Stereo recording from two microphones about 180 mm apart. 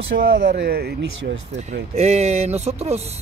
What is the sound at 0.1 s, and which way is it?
Speech, 55° right (ahead or behind).